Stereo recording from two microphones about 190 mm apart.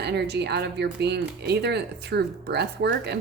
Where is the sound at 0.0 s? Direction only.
60° right (ahead or behind).